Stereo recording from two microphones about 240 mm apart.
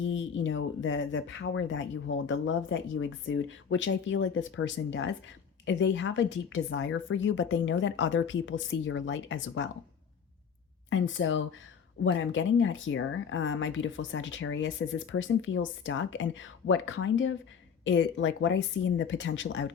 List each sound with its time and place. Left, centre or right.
0.0 s speech: left
10.8 s speech: left